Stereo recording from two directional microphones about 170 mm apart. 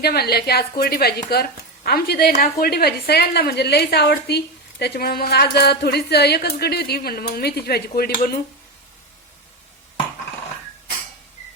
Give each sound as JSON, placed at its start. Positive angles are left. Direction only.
{"t": 0.0, "sound": "a woman's voice", "side_deg": 65}